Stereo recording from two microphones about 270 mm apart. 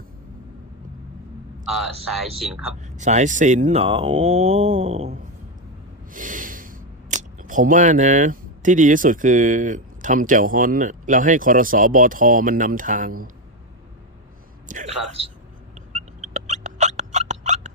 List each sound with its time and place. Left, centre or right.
2.4 s speech: centre
2.8 s speech: right
14.7 s speech: right
15.9 s a sound: right